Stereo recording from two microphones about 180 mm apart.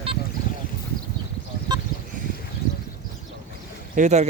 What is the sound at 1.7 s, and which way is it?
Honk, 25° right (ahead or behind).